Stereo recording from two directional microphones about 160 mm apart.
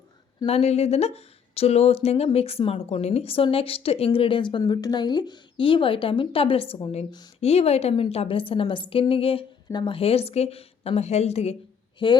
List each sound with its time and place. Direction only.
0.4 s speech: 40° left (ahead or behind)
12.0 s speech: 30° left (ahead or behind)